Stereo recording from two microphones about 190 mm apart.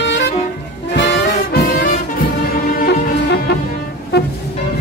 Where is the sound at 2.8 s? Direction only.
60° left (ahead or behind).